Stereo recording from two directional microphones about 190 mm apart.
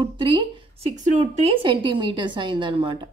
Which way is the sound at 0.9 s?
40° right (ahead or behind).